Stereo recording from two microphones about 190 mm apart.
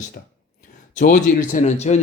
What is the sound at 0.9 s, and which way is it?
Speech, 45° left (ahead or behind).